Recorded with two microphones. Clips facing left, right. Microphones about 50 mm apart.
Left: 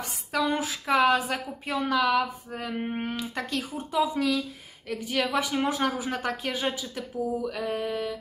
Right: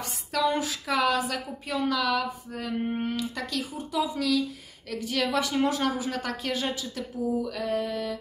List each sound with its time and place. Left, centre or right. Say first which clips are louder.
0.6 s speech: left 3 dB; left
1.7 s a woman's voice: left 2 dB; centre
2.7 s a woman's voice: right 3 dB; centre
3.1 s a woman's voice: even; left
7.2 s speech: even; centre
7.5 s speech: right 1 dB; centre